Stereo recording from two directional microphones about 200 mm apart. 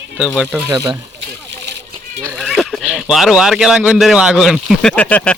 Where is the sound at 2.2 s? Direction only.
Centre (ahead or behind).